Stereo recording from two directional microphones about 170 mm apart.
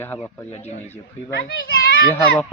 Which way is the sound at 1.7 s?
60° left (ahead or behind).